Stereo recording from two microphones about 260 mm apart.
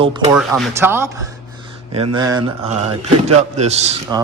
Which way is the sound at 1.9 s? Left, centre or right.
Centre.